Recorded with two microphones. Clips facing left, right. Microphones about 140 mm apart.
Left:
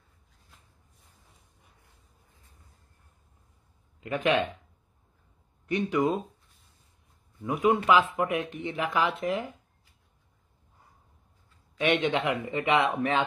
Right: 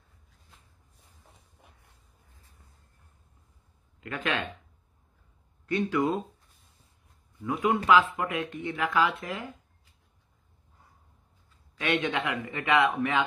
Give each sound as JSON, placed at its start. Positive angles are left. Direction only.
{"t": 4.0, "sound": "speech", "side_deg": 20}
{"t": 5.7, "sound": "speech", "side_deg": 20}
{"t": 7.4, "sound": "speech", "side_deg": 20}
{"t": 11.8, "sound": "speech", "side_deg": 20}